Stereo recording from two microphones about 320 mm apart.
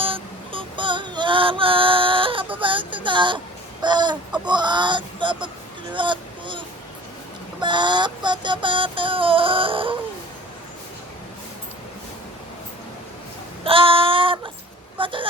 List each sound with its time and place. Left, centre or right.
0.0 s music: centre
2.6 s a sound: centre
4.4 s synthetic singing: centre
5.9 s a sound: centre
7.6 s synthetic singing: centre
13.7 s female singing: centre
14.9 s speech: centre